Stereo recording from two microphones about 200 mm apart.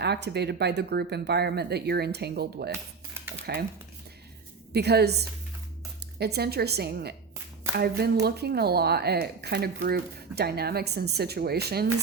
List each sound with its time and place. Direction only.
0.0 s speech: 55° right (ahead or behind)
4.7 s speech: 55° right (ahead or behind)